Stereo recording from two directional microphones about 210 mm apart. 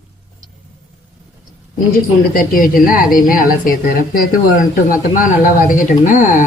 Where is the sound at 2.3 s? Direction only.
40° left (ahead or behind).